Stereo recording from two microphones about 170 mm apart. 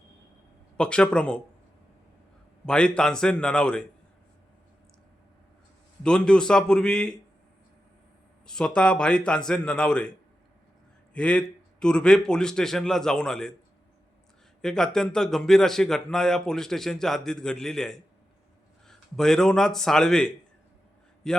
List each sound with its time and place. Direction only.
0.8 s speech: 5° left (ahead or behind)
2.6 s speech: 5° left (ahead or behind)
6.0 s speech: 5° left (ahead or behind)
8.4 s speech: 5° left (ahead or behind)
11.1 s speech: 5° left (ahead or behind)
14.6 s speech: 5° left (ahead or behind)